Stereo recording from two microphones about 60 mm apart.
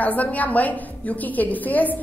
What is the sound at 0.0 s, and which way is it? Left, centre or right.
A woman's voice, left.